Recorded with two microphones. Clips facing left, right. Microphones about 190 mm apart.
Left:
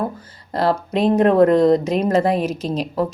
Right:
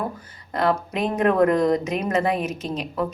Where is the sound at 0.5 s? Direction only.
35° left (ahead or behind).